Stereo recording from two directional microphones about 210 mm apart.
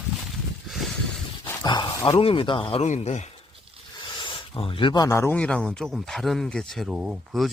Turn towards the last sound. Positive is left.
turn(degrees=0)  # may be behind; listen again after turning